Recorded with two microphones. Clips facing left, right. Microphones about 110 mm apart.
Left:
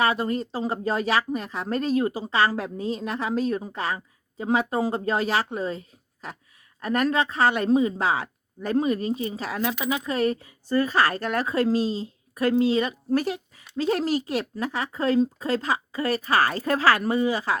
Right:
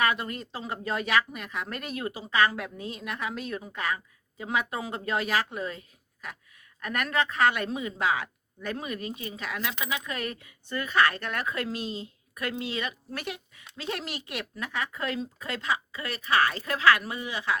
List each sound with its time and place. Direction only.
0.0 s speech: 30° left (ahead or behind)